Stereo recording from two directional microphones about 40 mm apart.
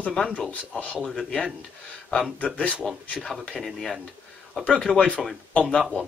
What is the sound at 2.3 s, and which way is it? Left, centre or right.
Speech, left.